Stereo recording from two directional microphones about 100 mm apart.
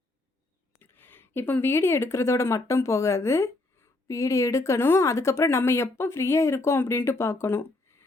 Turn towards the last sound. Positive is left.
turn(degrees=25)  # may be behind; listen again after turning